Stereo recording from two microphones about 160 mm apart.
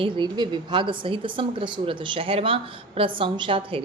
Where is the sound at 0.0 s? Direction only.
30° right (ahead or behind).